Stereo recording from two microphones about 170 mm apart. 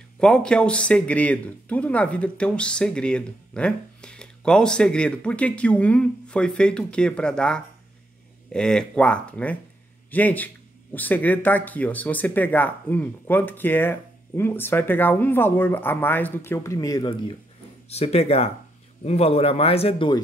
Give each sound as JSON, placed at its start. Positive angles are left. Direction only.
{"t": 0.2, "sound": "speech", "side_deg": 5}
{"t": 17.8, "sound": "speech", "side_deg": 35}